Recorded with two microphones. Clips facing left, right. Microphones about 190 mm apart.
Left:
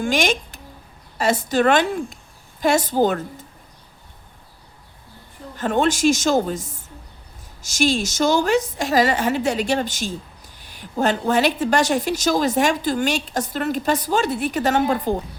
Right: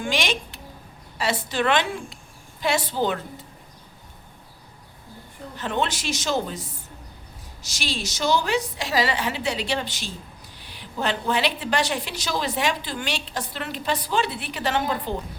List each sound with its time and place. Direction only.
0.0 s a woman's voice: 45° left (ahead or behind)
5.5 s a woman's voice: 45° left (ahead or behind)